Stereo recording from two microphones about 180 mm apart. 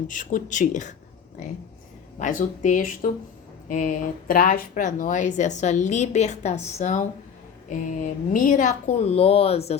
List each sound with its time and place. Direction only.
0.1 s speech: 45° left (ahead or behind)
2.1 s speech: 45° left (ahead or behind)